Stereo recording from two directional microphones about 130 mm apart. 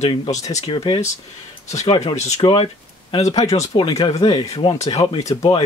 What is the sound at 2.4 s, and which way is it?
Speech, 40° left (ahead or behind).